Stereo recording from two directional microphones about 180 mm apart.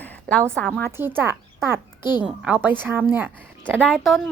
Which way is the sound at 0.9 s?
10° right (ahead or behind).